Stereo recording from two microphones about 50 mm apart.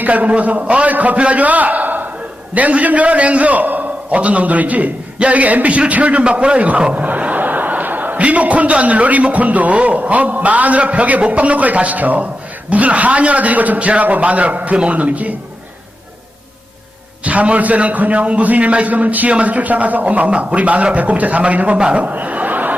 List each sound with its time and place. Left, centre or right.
0.0 s a man's voice: right
17.2 s a man's voice: right